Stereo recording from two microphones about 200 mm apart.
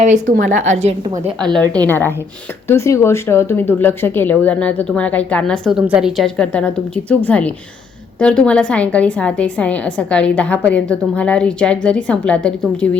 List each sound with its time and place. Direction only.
0.0 s speech: 40° right (ahead or behind)
1.4 s a woman's voice: 5° left (ahead or behind)